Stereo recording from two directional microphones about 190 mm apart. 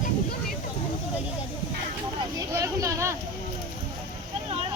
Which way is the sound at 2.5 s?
15° right (ahead or behind).